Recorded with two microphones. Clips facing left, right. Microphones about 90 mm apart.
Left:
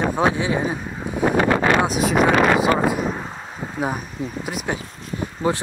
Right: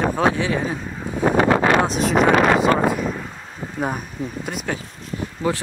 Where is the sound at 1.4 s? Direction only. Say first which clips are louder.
Right 2 dB; 35° right (ahead or behind).